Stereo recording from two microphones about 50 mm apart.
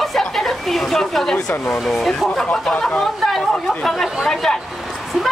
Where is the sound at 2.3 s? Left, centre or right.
Centre.